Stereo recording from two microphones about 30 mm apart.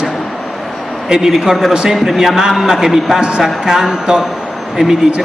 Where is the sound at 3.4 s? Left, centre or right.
Centre.